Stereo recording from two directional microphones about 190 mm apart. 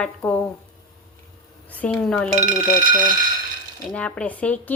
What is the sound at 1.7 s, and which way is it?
Speech, 10° left (ahead or behind).